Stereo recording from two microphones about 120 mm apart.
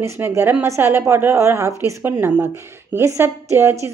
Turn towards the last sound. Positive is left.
turn(degrees=-25)  # may be behind; listen again after turning